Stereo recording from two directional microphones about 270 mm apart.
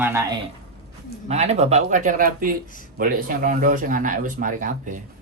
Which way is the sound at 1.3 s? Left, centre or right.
Right.